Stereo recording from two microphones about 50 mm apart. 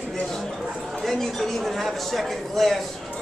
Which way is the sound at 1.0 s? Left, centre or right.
Centre.